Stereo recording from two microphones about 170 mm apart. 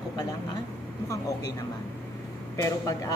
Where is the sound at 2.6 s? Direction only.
20° left (ahead or behind).